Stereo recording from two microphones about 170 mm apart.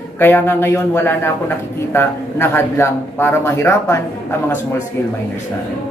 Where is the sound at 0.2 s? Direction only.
10° left (ahead or behind).